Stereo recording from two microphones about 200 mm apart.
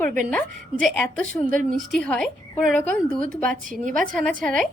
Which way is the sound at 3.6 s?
40° right (ahead or behind).